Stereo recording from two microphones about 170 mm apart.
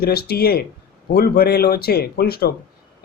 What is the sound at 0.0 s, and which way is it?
Speech, 65° left (ahead or behind).